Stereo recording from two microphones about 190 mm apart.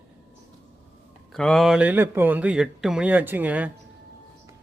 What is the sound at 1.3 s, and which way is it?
Speech, centre (ahead or behind).